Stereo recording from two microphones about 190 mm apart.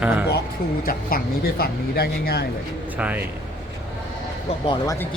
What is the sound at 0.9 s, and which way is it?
Speech, 50° left (ahead or behind).